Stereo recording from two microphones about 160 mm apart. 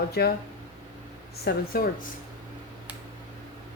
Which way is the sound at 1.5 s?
65° left (ahead or behind).